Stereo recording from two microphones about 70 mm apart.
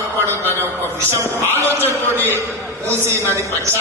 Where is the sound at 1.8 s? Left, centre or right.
Right.